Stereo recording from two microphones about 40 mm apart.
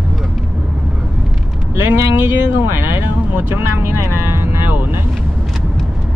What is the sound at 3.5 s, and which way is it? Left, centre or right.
Speech, right.